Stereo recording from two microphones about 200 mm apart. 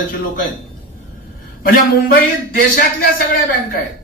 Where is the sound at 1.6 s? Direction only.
45° left (ahead or behind).